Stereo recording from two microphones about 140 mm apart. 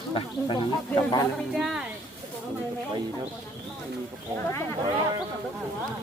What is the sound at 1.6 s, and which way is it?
Speech, 5° right (ahead or behind).